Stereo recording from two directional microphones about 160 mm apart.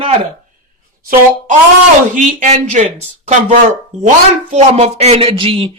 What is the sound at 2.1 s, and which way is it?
Speech, 50° right (ahead or behind).